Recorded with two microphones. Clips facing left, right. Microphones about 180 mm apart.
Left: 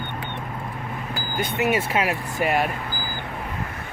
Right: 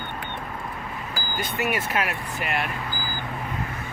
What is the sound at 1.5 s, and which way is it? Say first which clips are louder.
Speech: left 4 dB; 20° left (ahead or behind).